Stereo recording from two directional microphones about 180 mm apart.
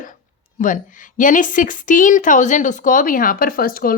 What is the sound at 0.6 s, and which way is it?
A woman's voice, 45° left (ahead or behind).